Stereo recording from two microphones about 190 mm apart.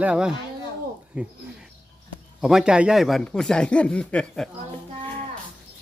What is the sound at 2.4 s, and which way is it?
Speech, centre (ahead or behind).